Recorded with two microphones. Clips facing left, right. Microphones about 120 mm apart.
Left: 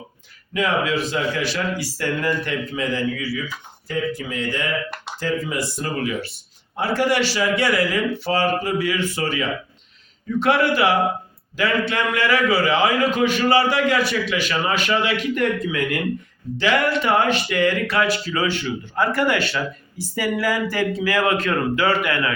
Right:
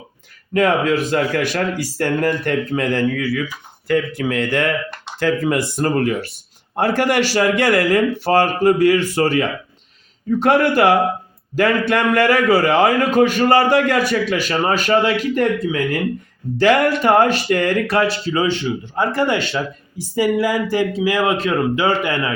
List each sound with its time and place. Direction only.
0.5 s a man's voice: 55° right (ahead or behind); by 15.8 s 35° right (ahead or behind)
16.6 s a man's voice: 45° right (ahead or behind)
18.3 s speech: 20° right (ahead or behind)